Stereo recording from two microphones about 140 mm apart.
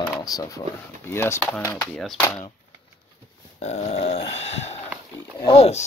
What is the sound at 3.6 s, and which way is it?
Grunt, 50° left (ahead or behind).